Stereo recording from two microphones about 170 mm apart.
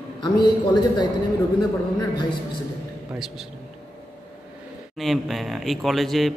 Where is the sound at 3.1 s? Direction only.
Centre (ahead or behind).